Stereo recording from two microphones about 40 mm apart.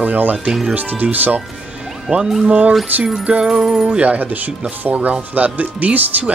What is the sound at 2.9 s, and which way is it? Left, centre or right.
Speech, right.